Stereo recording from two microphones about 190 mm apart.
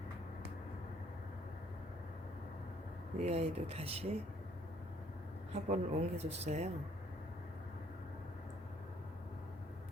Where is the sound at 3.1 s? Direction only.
35° right (ahead or behind).